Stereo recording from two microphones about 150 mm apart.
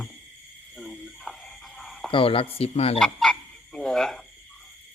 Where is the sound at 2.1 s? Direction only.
40° left (ahead or behind).